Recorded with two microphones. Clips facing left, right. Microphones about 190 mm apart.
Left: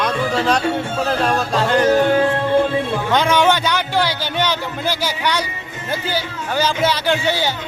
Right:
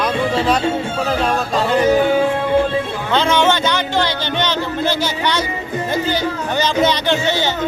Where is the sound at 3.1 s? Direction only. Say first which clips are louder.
Right 1 dB; 10° left (ahead or behind).